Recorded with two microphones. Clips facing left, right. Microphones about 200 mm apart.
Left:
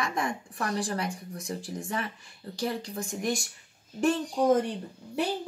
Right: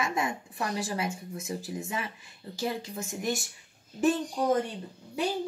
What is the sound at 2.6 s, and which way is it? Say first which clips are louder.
Speech: left 1 dB; 20° right (ahead or behind).